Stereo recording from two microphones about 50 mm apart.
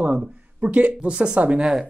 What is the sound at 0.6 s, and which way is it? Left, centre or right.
Speech, right.